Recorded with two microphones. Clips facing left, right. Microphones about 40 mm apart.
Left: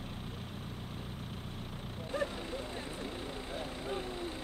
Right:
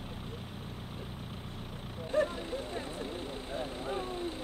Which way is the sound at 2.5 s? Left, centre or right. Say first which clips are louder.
Right 3 dB; centre.